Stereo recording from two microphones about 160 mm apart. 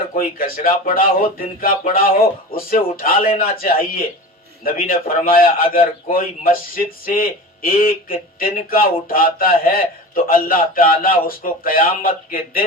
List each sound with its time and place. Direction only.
0.1 s speech: 65° left (ahead or behind)